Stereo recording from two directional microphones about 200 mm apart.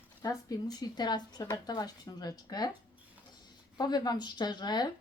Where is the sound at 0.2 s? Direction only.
15° left (ahead or behind).